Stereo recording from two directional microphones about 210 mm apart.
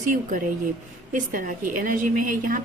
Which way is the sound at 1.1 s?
40° right (ahead or behind).